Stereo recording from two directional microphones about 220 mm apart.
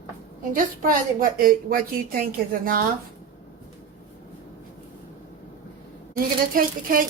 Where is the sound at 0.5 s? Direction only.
40° right (ahead or behind).